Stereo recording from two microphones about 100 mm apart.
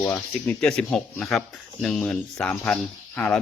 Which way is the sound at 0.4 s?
10° left (ahead or behind).